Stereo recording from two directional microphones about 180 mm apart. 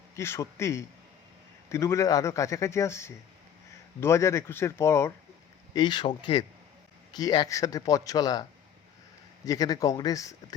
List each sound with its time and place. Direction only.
0.2 s speech: 15° left (ahead or behind)
9.5 s speech: 20° left (ahead or behind)